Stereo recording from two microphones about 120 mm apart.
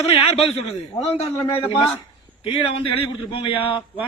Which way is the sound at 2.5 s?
50° left (ahead or behind).